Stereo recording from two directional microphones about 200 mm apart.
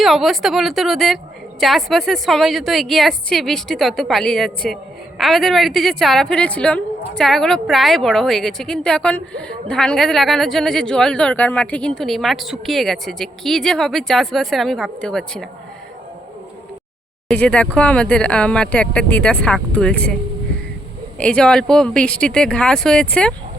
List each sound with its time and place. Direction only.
0.0 s a woman's voice: centre (ahead or behind)
17.2 s a woman's voice: 5° left (ahead or behind)
21.2 s a woman's voice: 5° left (ahead or behind)